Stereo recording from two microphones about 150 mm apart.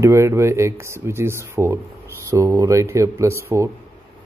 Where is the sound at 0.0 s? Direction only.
20° right (ahead or behind).